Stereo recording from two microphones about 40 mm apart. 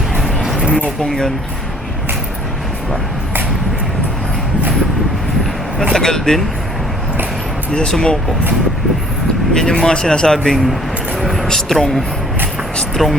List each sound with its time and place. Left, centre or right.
6.0 s speech: centre
7.9 s speech: centre
9.5 s speech: centre
11.2 s vehicle: centre
11.5 s speech: centre